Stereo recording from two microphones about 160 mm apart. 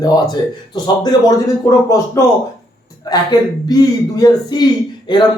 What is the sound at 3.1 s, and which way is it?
A man's voice, 25° left (ahead or behind).